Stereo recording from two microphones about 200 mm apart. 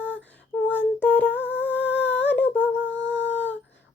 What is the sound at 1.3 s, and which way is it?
Humming, 60° left (ahead or behind).